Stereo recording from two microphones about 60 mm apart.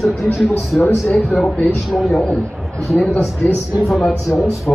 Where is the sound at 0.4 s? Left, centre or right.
Centre.